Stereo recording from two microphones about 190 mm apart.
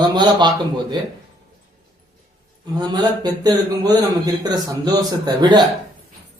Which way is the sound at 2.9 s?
20° right (ahead or behind).